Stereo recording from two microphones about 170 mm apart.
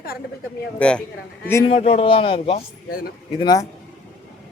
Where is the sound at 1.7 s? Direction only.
40° left (ahead or behind); by 3.7 s 20° left (ahead or behind).